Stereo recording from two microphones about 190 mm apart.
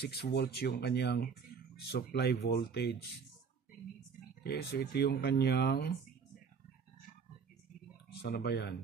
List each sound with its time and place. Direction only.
0.0 s speech: 60° left (ahead or behind)
4.4 s speech: 60° left (ahead or behind)
8.2 s speech: 60° left (ahead or behind)